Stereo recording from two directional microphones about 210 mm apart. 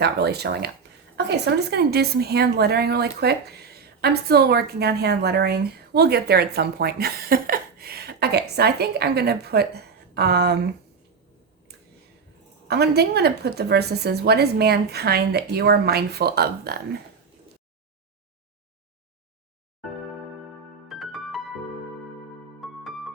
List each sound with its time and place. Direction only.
0.0 s a woman's voice: 50° right (ahead or behind)
12.6 s a woman's voice: 50° right (ahead or behind)
20.8 s music: centre (ahead or behind)
22.6 s music: centre (ahead or behind)